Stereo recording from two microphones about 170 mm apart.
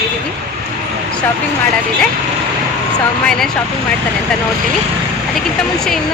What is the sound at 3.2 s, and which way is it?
Speech, 5° left (ahead or behind).